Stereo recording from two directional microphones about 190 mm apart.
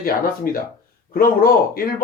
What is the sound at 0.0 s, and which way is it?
Speech, 50° left (ahead or behind).